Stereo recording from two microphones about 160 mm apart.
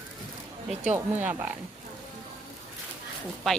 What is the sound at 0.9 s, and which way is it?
Speech, 10° right (ahead or behind).